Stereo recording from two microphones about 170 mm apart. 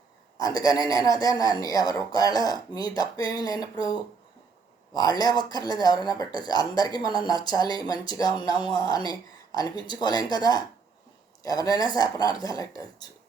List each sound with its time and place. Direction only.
0.3 s speech: 20° left (ahead or behind)